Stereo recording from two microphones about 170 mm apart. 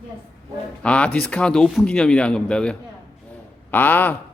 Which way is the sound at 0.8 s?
5° left (ahead or behind).